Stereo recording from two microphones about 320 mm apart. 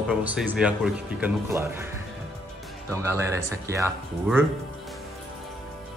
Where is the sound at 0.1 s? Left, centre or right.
Centre.